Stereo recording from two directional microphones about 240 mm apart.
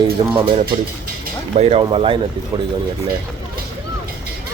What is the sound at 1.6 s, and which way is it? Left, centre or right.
Speech, right.